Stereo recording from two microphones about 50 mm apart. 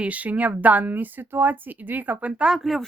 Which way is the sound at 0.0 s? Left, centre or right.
Right.